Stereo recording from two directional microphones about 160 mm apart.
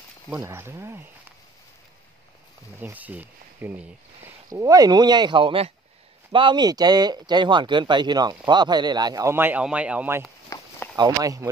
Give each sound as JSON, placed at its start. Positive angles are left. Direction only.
{"t": 0.4, "sound": "a man's voice", "side_deg": -15}
{"t": 2.8, "sound": "a man's voice", "side_deg": -10}
{"t": 4.5, "sound": "a man's voice", "side_deg": -20}
{"t": 10.5, "sound": "a sound", "side_deg": 20}
{"t": 11.0, "sound": "speech", "side_deg": -20}